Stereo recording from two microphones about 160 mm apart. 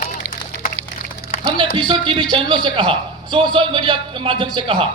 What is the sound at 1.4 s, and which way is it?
A man's voice, 30° right (ahead or behind).